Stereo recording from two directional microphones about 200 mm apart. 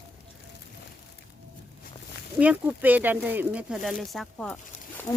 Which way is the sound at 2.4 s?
5° right (ahead or behind).